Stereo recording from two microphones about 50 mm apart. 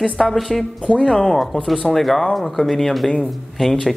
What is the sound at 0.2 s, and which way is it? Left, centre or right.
A man's voice, centre.